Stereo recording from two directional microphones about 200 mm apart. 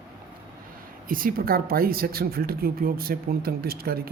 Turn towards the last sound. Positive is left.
turn(degrees=-50)  # may be behind; listen again after turning